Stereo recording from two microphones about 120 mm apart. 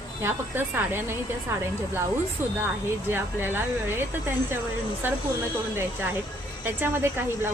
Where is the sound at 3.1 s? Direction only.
20° right (ahead or behind).